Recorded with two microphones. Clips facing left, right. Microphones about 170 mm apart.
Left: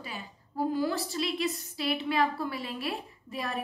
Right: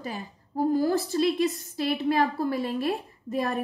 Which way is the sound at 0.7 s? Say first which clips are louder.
Right 6 dB; 45° right (ahead or behind).